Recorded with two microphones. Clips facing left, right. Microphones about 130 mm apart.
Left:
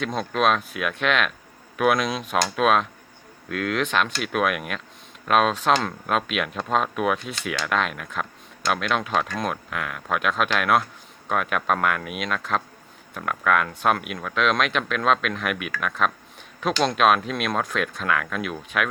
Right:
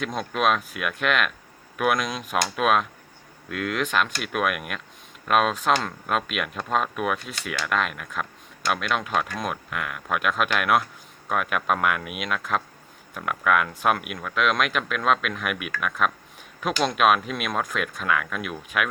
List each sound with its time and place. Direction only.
0.2 s speech: 5° right (ahead or behind)